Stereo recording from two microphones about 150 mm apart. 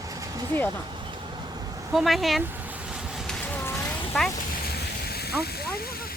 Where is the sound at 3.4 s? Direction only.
10° left (ahead or behind).